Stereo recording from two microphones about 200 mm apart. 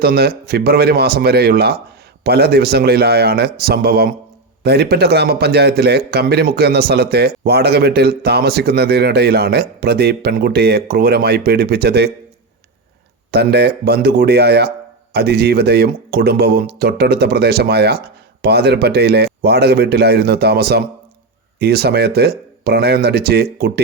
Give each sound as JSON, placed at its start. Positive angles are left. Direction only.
{"t": 0.0, "sound": "a man's voice", "side_deg": -50}
{"t": 13.3, "sound": "a man's voice", "side_deg": -55}